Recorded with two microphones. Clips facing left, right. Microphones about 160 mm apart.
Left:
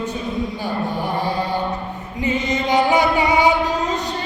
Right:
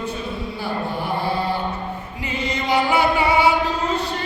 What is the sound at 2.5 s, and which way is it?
Chant, 20° left (ahead or behind).